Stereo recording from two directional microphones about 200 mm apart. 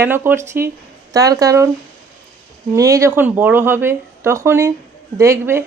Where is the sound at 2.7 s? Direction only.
15° right (ahead or behind).